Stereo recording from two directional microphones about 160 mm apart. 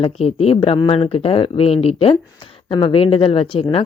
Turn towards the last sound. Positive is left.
turn(degrees=35)  # may be behind; listen again after turning